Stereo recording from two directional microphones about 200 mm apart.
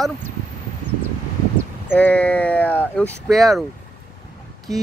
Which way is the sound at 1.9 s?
5° left (ahead or behind).